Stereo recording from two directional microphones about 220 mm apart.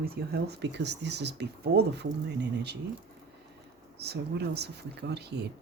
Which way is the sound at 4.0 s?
50° right (ahead or behind).